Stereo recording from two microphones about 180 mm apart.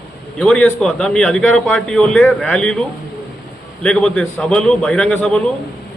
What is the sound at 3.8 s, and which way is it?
A man's voice, 5° left (ahead or behind).